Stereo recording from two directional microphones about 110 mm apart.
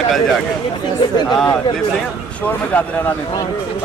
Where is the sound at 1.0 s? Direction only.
40° left (ahead or behind).